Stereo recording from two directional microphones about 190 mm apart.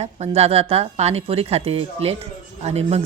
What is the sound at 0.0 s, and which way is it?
A woman's voice, 35° right (ahead or behind).